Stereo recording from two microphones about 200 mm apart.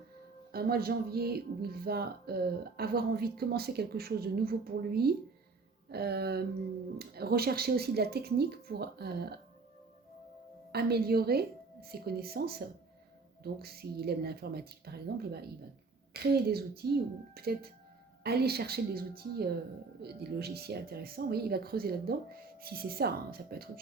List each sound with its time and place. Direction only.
0.5 s speech: 50° right (ahead or behind)
10.7 s speech: 50° right (ahead or behind)